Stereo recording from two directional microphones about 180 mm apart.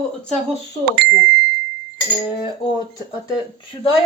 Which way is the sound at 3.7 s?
20° left (ahead or behind).